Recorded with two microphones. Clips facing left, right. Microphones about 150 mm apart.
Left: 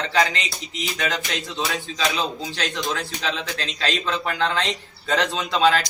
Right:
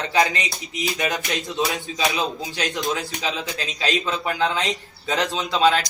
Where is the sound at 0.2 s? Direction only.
20° right (ahead or behind).